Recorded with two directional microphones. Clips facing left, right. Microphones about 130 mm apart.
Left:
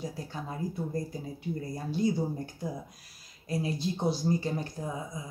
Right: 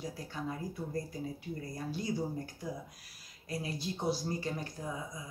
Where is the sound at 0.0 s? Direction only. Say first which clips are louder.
Left 2 dB; 25° left (ahead or behind).